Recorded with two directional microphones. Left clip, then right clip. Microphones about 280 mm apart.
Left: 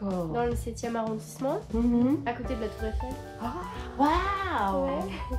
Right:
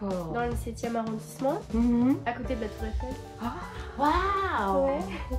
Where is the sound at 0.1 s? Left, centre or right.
Centre.